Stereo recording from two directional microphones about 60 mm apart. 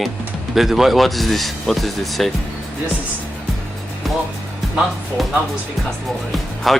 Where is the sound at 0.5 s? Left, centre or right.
Centre.